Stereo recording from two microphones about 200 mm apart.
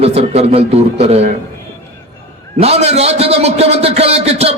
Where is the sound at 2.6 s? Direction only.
30° right (ahead or behind).